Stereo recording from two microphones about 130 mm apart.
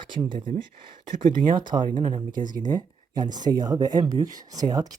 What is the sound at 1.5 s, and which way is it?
Speech, 35° right (ahead or behind).